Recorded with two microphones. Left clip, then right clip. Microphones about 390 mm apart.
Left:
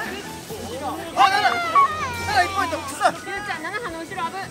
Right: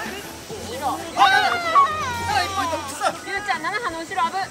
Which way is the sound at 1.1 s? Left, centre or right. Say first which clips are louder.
Even; centre.